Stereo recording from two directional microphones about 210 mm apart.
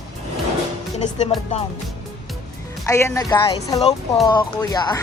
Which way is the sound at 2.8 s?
15° left (ahead or behind).